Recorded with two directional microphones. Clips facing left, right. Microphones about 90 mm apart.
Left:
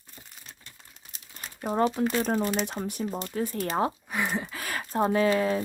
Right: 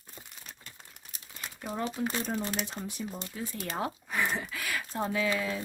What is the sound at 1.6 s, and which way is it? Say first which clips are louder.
Speech: left 8 dB; 50° left (ahead or behind).